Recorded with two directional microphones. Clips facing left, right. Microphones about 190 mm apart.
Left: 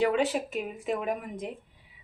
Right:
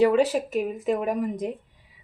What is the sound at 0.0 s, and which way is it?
Speech, 40° right (ahead or behind).